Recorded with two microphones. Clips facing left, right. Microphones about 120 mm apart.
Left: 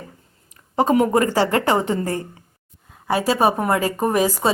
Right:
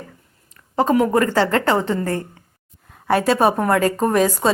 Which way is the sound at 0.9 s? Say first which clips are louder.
Right 1 dB; 20° left (ahead or behind).